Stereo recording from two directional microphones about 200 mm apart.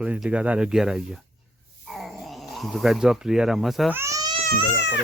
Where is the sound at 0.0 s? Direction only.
5° right (ahead or behind).